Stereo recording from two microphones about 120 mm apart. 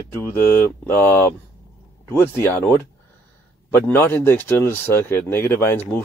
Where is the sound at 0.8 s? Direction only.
15° left (ahead or behind).